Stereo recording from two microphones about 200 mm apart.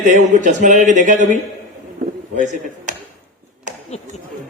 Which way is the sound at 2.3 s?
40° right (ahead or behind).